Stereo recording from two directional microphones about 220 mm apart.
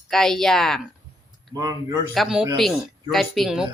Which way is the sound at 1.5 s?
15° right (ahead or behind).